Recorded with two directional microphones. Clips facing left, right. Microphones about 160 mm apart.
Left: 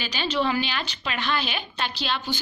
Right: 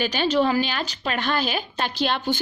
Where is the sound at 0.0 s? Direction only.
50° right (ahead or behind).